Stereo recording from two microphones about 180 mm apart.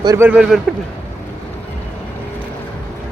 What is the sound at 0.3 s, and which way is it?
Speech, 5° right (ahead or behind).